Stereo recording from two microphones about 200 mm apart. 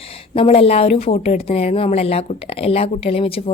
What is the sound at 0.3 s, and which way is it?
A woman's voice, 30° left (ahead or behind).